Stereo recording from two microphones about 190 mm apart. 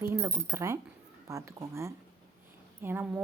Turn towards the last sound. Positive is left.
turn(degrees=-10)  # may be behind; listen again after turning